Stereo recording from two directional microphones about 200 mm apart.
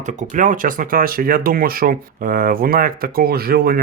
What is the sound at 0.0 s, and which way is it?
Speech, 35° right (ahead or behind).